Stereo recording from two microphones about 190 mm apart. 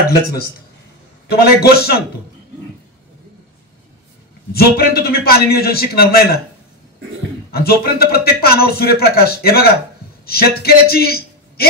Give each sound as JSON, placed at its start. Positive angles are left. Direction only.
{"t": 1.3, "sound": "a man's voice", "side_deg": 55}
{"t": 4.5, "sound": "a man's voice", "side_deg": 55}
{"t": 7.5, "sound": "a man's voice", "side_deg": 55}